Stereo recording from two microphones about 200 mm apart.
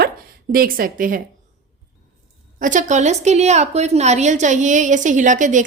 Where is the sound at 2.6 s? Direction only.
40° right (ahead or behind).